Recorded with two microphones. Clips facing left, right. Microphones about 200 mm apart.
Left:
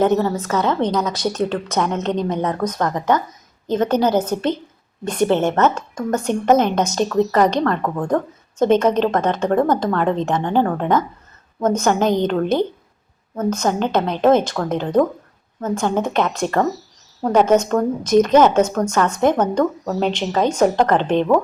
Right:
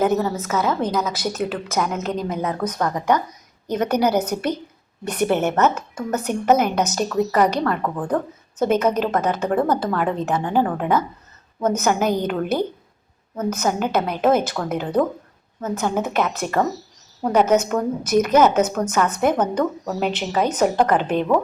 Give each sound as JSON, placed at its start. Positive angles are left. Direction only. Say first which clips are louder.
{"t": 0.0, "sound": "a woman's voice", "louder": "left 3 dB", "side_deg": -5}
{"t": 5.3, "sound": "a woman's voice", "louder": "left 1 dB", "side_deg": -10}